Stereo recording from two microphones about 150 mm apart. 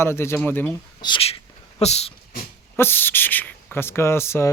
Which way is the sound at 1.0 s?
35° left (ahead or behind).